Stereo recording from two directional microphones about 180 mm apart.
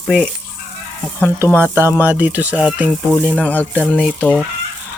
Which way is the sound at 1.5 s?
15° right (ahead or behind).